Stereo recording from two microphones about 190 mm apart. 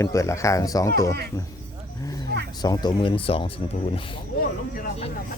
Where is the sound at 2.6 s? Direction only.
20° left (ahead or behind).